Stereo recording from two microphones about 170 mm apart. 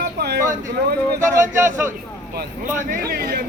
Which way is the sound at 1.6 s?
15° right (ahead or behind).